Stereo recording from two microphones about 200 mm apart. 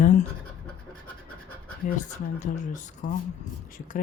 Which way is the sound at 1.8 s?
40° left (ahead or behind).